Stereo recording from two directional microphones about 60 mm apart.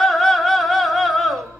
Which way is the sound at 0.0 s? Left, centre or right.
Centre.